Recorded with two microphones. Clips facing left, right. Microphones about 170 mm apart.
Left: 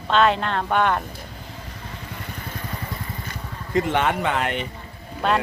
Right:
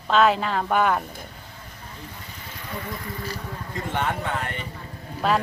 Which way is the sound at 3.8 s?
90° left.